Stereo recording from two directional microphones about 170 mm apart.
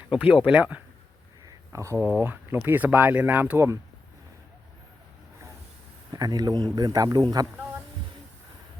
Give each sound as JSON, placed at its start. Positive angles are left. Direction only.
{"t": 0.3, "sound": "speech", "side_deg": -5}
{"t": 6.1, "sound": "a man's voice", "side_deg": -20}